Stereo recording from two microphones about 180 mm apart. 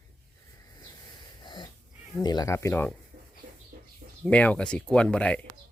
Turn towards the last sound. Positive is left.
turn(degrees=5)  # may be behind; listen again after turning